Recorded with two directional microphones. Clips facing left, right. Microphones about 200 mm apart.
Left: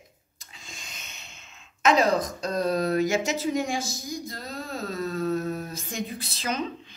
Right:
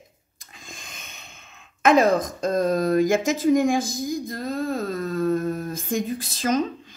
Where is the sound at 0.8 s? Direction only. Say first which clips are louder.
Right 2 dB; 55° right (ahead or behind).